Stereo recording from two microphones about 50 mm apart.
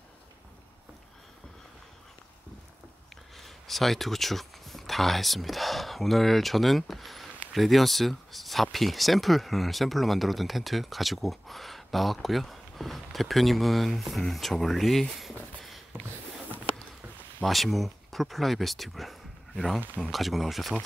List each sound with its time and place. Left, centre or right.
3.3 s speech: centre
15.9 s a sound: right
17.4 s speech: centre